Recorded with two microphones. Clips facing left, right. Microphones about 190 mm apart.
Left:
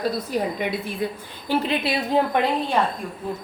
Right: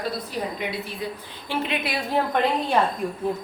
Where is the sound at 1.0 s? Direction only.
50° left (ahead or behind).